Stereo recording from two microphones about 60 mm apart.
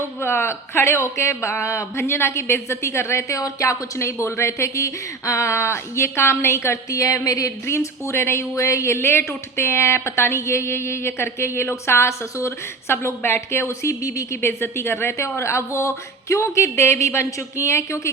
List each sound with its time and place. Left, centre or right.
0.2 s a woman's voice: left
6.9 s speech: left
7.6 s a woman's voice: left
14.4 s a woman's voice: left